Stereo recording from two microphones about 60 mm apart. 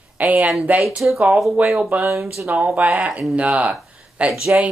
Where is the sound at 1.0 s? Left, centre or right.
Centre.